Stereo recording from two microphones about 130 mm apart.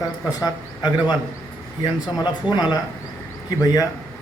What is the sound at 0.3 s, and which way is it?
A man's voice, 30° left (ahead or behind).